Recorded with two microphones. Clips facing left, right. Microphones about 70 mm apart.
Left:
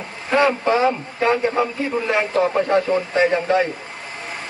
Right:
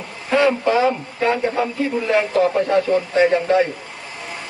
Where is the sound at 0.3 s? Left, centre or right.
Left.